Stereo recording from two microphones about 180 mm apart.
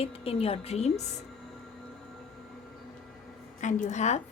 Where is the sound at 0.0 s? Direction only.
30° left (ahead or behind).